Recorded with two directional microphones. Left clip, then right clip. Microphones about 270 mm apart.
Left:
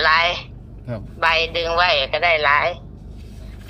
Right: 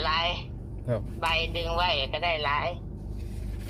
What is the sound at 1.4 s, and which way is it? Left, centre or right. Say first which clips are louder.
Speech: left 10 dB; left.